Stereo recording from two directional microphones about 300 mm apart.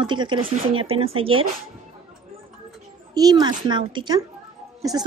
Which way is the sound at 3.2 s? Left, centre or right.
Centre.